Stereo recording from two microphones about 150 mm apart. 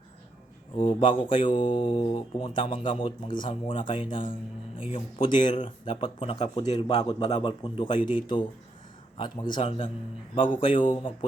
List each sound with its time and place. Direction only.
0.8 s speech: 35° left (ahead or behind)
6.4 s speech: 50° left (ahead or behind)
7.0 s a man's voice: 30° left (ahead or behind)
9.1 s speech: 30° left (ahead or behind)